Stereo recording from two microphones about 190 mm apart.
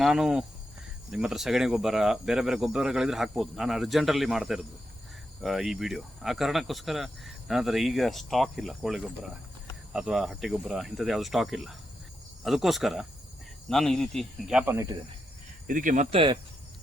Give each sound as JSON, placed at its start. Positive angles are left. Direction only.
{"t": 0.0, "sound": "speech", "side_deg": -5}
{"t": 15.6, "sound": "speech", "side_deg": -45}
{"t": 16.0, "sound": "speech", "side_deg": -25}